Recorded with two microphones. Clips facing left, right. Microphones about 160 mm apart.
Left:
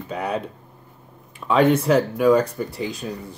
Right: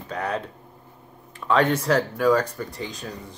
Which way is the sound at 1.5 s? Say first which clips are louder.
Left 4 dB; 10° left (ahead or behind).